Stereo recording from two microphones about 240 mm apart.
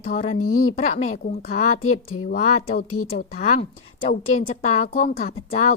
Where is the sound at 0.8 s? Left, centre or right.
Left.